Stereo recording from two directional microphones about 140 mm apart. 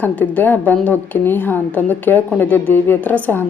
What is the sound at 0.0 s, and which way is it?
Speech, 10° left (ahead or behind).